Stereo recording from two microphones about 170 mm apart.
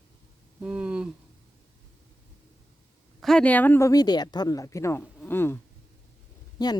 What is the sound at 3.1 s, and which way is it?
Speech, 5° left (ahead or behind).